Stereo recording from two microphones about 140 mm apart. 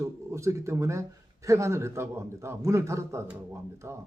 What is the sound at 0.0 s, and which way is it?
A man's voice, 20° right (ahead or behind).